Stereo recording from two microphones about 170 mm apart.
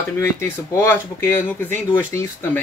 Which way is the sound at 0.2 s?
10° left (ahead or behind).